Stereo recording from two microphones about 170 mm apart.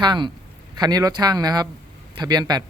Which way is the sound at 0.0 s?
25° right (ahead or behind).